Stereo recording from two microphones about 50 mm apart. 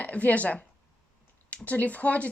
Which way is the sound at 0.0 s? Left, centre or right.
Left.